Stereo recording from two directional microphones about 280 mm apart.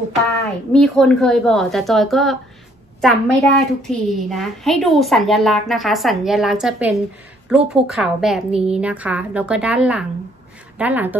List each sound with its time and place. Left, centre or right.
0.7 s a woman's voice: centre